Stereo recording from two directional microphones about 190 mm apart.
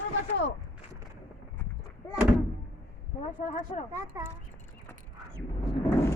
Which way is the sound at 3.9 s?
15° right (ahead or behind).